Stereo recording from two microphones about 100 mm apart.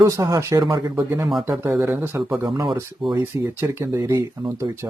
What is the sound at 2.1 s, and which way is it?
Speech, 25° right (ahead or behind).